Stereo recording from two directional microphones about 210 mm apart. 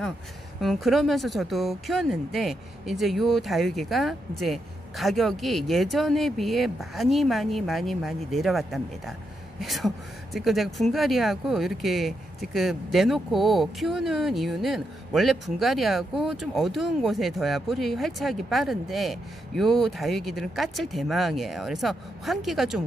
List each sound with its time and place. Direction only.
0.6 s speech: centre (ahead or behind)